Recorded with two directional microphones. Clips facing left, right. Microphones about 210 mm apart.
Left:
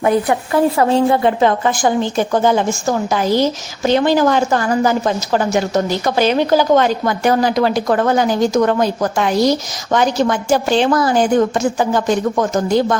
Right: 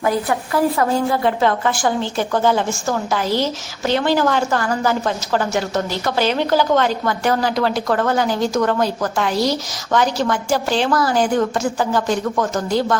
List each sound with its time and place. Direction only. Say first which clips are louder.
0.0 s a woman's voice: left 4 dB; 20° left (ahead or behind)